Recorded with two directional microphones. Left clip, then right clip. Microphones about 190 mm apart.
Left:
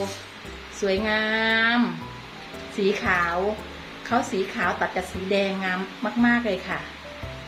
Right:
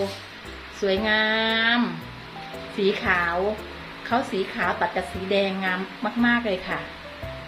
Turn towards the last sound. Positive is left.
turn(degrees=0)  # may be behind; listen again after turning